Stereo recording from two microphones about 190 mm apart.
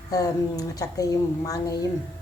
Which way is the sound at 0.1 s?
20° left (ahead or behind).